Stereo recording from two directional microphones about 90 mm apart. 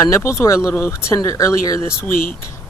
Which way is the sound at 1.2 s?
40° left (ahead or behind).